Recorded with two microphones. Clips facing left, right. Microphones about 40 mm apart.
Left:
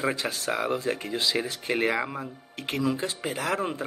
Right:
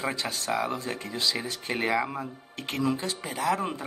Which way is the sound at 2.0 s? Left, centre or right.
Centre.